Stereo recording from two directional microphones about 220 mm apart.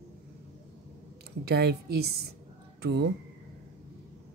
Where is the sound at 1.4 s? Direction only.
50° right (ahead or behind).